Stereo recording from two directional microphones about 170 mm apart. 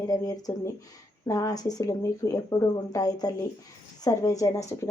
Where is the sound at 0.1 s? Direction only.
20° left (ahead or behind).